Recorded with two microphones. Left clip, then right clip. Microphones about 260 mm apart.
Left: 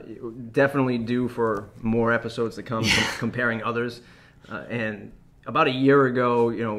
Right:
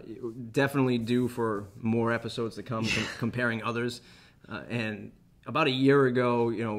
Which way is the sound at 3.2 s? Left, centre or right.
Right.